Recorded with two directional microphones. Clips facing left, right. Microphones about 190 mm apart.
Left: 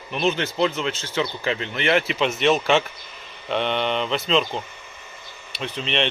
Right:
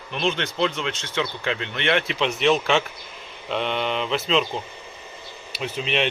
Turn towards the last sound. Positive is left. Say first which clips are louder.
# even
turn(degrees=-5)  # may be behind; listen again after turning